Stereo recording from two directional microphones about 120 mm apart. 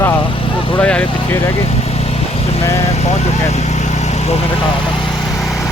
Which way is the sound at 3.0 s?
70° left (ahead or behind).